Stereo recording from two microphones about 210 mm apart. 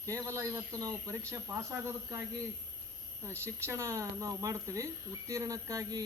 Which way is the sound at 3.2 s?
10° right (ahead or behind).